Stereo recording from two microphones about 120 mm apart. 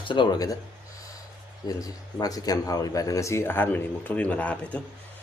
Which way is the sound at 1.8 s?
30° left (ahead or behind).